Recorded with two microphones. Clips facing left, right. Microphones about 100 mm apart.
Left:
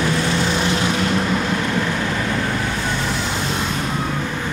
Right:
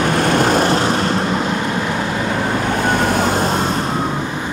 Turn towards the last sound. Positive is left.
turn(degrees=-45)  # may be behind; listen again after turning